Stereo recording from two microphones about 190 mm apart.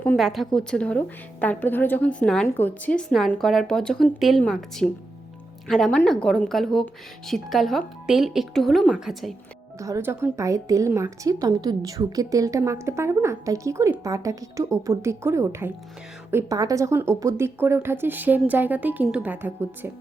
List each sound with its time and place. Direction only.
0.0 s a woman's voice: 5° left (ahead or behind)
9.7 s a woman's voice: 15° right (ahead or behind)